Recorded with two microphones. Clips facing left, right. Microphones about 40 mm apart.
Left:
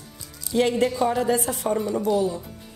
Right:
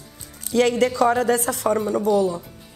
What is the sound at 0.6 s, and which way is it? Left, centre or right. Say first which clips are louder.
Speech: right 3 dB; right.